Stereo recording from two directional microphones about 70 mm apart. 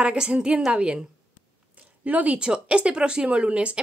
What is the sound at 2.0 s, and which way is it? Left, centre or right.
A woman's voice, right.